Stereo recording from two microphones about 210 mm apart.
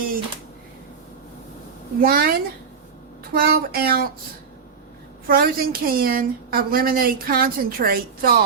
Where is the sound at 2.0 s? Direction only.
45° right (ahead or behind).